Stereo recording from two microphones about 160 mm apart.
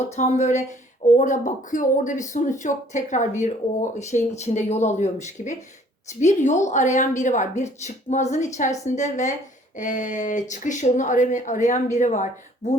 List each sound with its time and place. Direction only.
0.2 s a woman's voice: 45° left (ahead or behind)